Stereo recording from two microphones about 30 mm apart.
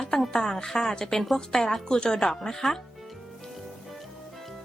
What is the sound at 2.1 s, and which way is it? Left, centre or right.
Speech, centre.